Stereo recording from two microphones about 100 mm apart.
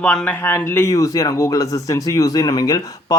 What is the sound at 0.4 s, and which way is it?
Speech, 25° left (ahead or behind).